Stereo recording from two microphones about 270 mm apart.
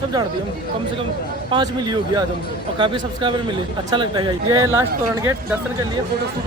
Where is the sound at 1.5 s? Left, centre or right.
Centre.